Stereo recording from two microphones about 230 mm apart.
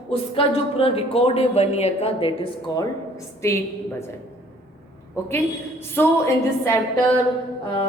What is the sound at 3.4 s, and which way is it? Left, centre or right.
Speech, centre.